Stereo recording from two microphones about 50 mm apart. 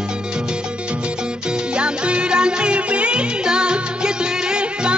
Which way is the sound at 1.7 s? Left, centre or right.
Right.